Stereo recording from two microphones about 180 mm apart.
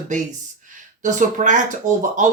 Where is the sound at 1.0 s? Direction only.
45° right (ahead or behind).